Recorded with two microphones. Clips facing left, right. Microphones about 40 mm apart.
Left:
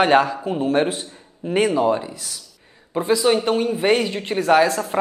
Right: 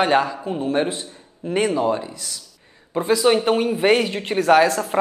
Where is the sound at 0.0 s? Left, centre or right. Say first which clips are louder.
Left 2 dB; centre.